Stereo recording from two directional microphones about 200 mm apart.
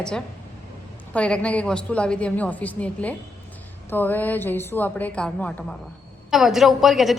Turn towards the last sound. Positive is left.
turn(degrees=0)  # may be behind; listen again after turning